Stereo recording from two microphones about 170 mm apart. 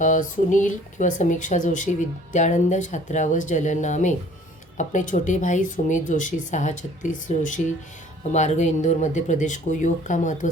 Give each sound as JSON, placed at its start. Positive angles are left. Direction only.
{"t": 0.0, "sound": "speech", "side_deg": 45}